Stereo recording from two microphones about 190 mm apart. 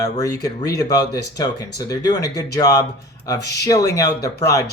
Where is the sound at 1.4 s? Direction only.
20° left (ahead or behind).